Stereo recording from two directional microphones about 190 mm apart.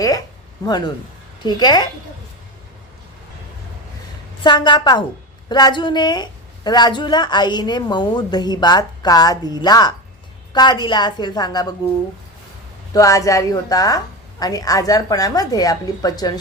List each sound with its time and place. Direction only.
1.4 s a woman's voice: 20° left (ahead or behind)
4.4 s a woman's voice: 25° left (ahead or behind)
12.9 s a woman's voice: 15° left (ahead or behind)